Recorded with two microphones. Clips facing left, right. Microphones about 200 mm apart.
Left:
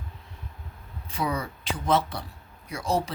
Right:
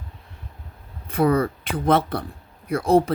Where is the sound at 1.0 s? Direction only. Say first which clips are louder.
Right 10 dB; 55° right (ahead or behind).